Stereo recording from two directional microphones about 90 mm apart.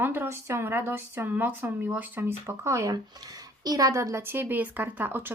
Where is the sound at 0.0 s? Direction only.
25° right (ahead or behind).